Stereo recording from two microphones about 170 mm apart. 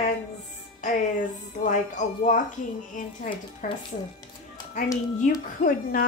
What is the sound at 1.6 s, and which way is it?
Speech, 50° left (ahead or behind).